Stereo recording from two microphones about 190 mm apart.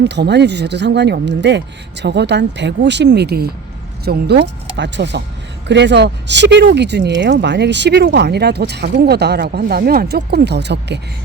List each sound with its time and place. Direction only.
0.0 s speech: 65° right (ahead or behind)